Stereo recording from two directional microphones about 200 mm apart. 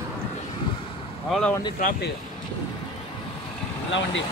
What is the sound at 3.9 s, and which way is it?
Speech, 70° left (ahead or behind).